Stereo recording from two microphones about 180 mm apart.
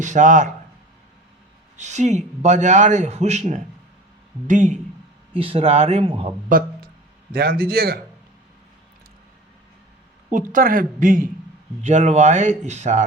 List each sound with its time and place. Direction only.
0.0 s a man's voice: 45° right (ahead or behind)
1.7 s a man's voice: 40° right (ahead or behind)
5.3 s a man's voice: 30° right (ahead or behind)
7.3 s a man's voice: 60° right (ahead or behind)
10.3 s a man's voice: 50° right (ahead or behind)
11.8 s a man's voice: 40° right (ahead or behind)